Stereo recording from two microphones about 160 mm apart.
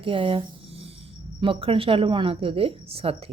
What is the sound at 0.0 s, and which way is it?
Speech, 35° right (ahead or behind).